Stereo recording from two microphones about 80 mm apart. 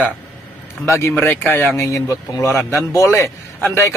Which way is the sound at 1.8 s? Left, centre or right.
Left.